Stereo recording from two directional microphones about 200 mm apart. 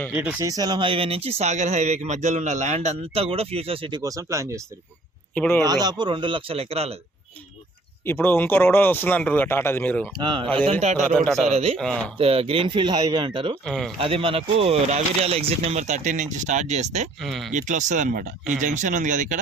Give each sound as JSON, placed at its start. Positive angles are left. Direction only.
{"t": 0.1, "sound": "speech", "side_deg": -5}
{"t": 0.3, "sound": "speech", "side_deg": -20}
{"t": 5.3, "sound": "speech", "side_deg": 5}
{"t": 5.6, "sound": "speech", "side_deg": -20}
{"t": 8.0, "sound": "speech", "side_deg": 10}
{"t": 10.2, "sound": "speech", "side_deg": -25}
{"t": 11.0, "sound": "speech", "side_deg": 0}
{"t": 11.4, "sound": "speech", "side_deg": -30}
{"t": 11.8, "sound": "speech", "side_deg": 5}
{"t": 12.1, "sound": "speech", "side_deg": -30}
{"t": 13.7, "sound": "speech", "side_deg": 0}
{"t": 14.0, "sound": "speech", "side_deg": -25}
{"t": 17.2, "sound": "speech", "side_deg": 0}
{"t": 17.5, "sound": "speech", "side_deg": -40}